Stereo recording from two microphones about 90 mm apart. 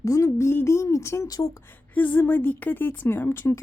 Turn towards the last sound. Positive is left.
turn(degrees=25)  # may be behind; listen again after turning